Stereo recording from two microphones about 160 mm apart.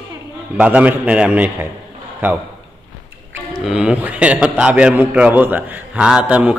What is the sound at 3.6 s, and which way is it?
A man's voice, 5° right (ahead or behind).